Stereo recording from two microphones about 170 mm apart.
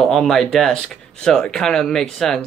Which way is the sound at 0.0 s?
Centre (ahead or behind).